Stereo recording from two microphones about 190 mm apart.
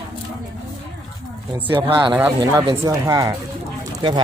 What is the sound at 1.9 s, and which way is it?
Speech, 25° right (ahead or behind).